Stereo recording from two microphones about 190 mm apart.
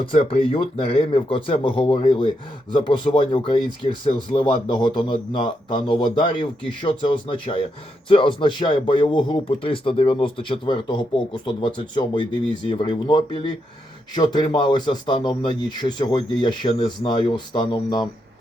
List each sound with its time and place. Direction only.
0.3 s speech: 30° left (ahead or behind)